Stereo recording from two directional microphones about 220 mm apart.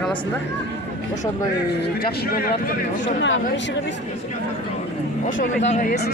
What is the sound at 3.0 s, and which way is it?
Speech, 55° left (ahead or behind).